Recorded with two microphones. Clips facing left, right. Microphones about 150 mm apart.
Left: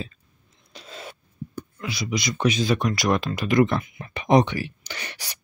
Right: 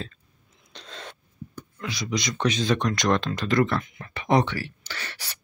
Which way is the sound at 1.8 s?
5° left (ahead or behind).